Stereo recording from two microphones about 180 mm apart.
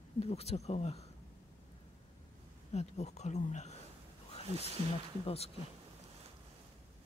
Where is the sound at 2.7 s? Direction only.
40° left (ahead or behind).